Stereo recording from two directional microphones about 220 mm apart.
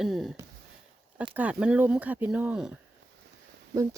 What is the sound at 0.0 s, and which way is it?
Speech, centre (ahead or behind).